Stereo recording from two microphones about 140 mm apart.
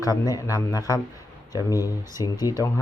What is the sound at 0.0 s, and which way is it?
Speech, 25° left (ahead or behind).